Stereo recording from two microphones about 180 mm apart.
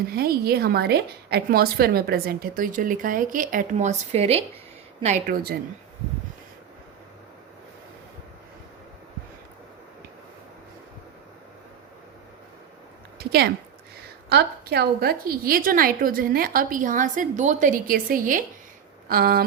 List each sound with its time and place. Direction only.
0.1 s a woman's voice: 60° right (ahead or behind); by 4.4 s 35° right (ahead or behind)
5.2 s a woman's voice: 55° right (ahead or behind)
13.1 s a sound: 65° right (ahead or behind)
14.3 s a woman's voice: 65° right (ahead or behind)